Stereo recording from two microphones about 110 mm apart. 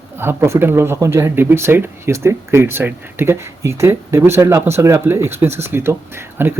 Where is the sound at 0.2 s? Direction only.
20° right (ahead or behind).